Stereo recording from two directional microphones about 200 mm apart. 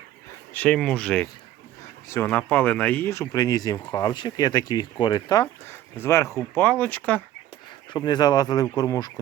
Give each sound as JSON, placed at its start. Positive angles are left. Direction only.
{"t": 0.5, "sound": "speech", "side_deg": 5}
{"t": 7.9, "sound": "speech", "side_deg": 20}